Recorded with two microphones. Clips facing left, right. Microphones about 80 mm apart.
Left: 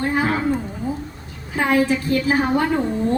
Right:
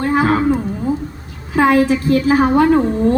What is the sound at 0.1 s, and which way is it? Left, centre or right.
Wild animals, right.